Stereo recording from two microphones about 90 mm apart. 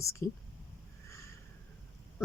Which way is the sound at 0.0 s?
35° left (ahead or behind).